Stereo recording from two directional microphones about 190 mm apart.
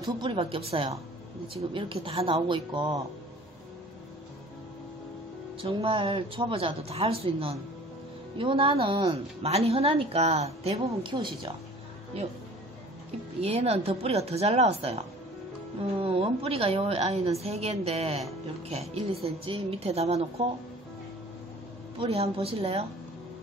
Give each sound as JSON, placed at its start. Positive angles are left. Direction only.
{"t": 0.0, "sound": "a woman's voice", "side_deg": -25}
{"t": 5.6, "sound": "a woman's voice", "side_deg": -30}
{"t": 13.4, "sound": "a woman's voice", "side_deg": -35}
{"t": 16.0, "sound": "a woman's voice", "side_deg": -30}
{"t": 21.9, "sound": "a woman's voice", "side_deg": -30}